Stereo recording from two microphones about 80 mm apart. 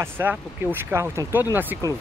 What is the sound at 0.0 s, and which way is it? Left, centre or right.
Speech, right.